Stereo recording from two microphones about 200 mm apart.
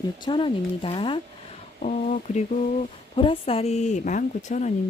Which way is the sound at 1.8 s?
40° left (ahead or behind).